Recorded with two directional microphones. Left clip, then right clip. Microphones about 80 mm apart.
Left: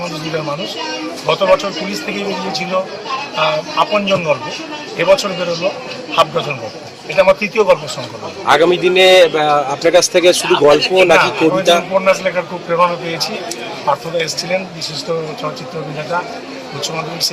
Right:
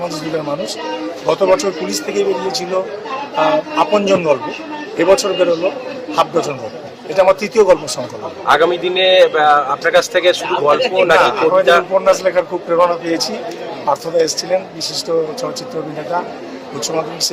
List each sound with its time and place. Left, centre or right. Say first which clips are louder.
0.0 s speech: even; right
16.8 s speech: right 1 dB; right